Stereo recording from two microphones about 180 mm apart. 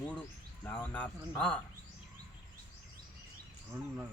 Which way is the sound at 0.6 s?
10° left (ahead or behind).